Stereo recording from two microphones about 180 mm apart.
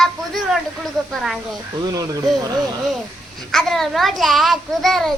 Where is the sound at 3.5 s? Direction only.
Centre (ahead or behind).